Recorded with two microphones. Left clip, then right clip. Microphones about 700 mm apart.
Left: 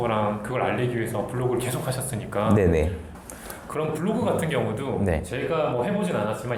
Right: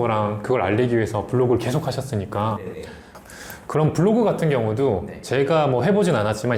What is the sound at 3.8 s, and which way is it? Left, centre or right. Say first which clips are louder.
Speech: right 8 dB; right.